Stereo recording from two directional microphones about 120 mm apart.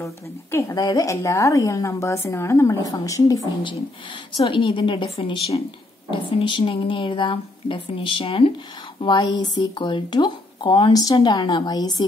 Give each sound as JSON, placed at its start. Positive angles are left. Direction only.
{"t": 0.0, "sound": "a woman's voice", "side_deg": 20}
{"t": 4.4, "sound": "a woman's voice", "side_deg": 45}
{"t": 9.0, "sound": "speech", "side_deg": 35}
{"t": 10.9, "sound": "speech", "side_deg": 30}